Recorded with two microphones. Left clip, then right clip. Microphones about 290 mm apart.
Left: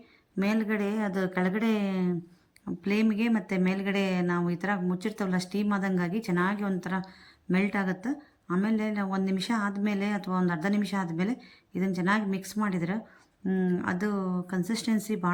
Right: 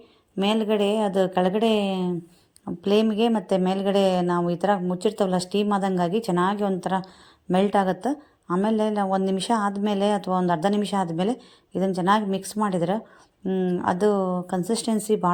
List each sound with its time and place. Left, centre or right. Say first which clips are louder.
0.3 s a woman's voice: right 7 dB; centre
0.9 s a woman's voice: right 9 dB; right
1.1 s a woman's voice: right 8 dB; centre
1.7 s a woman's voice: right 7 dB; centre